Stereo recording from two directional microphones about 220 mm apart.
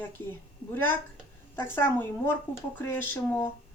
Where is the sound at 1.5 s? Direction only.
10° left (ahead or behind).